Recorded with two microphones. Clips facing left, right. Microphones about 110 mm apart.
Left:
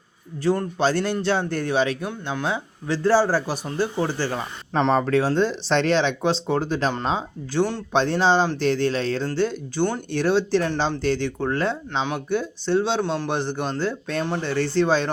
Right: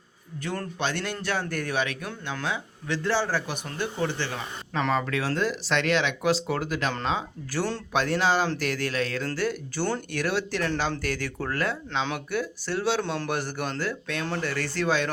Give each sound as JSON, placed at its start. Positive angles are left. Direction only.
{"t": 0.4, "sound": "speech", "side_deg": 20}
{"t": 0.8, "sound": "speech", "side_deg": 35}
{"t": 10.2, "sound": "speech", "side_deg": 30}